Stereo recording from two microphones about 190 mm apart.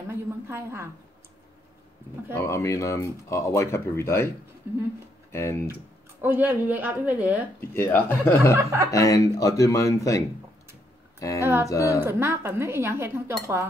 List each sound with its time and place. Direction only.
0.1 s a woman's voice: 15° right (ahead or behind)
2.3 s speech: 15° left (ahead or behind)
5.3 s speech: 15° left (ahead or behind)
6.2 s speech: 10° right (ahead or behind)
7.7 s speech: 10° left (ahead or behind)
11.1 s a sound: 15° left (ahead or behind)
11.7 s speech: 15° left (ahead or behind)
12.0 s speech: 10° right (ahead or behind)